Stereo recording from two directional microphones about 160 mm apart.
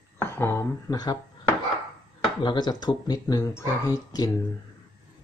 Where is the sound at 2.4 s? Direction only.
25° left (ahead or behind).